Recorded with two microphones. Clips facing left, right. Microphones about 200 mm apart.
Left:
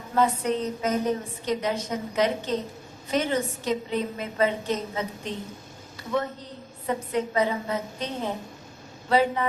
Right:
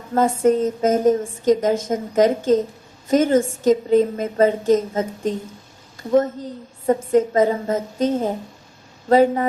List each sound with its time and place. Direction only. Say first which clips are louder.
0.1 s a woman's voice: right 7 dB; 45° right (ahead or behind)